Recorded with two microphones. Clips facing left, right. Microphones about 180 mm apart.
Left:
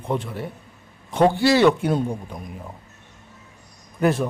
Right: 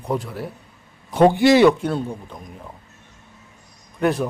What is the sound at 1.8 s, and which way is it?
Speech, 10° left (ahead or behind).